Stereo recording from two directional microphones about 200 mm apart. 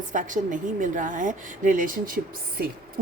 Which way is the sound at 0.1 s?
40° right (ahead or behind).